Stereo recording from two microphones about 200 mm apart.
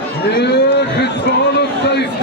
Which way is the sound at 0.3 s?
55° left (ahead or behind).